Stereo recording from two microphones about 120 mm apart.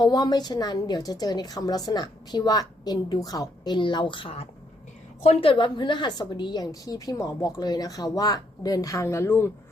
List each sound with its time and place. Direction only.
0.0 s a woman's voice: 35° left (ahead or behind); by 9.5 s 20° left (ahead or behind)